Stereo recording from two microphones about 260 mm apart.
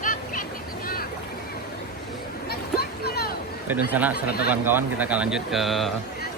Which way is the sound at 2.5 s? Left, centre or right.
Left.